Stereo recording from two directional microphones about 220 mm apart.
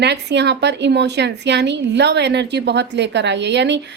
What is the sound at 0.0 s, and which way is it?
A woman's voice, 50° right (ahead or behind).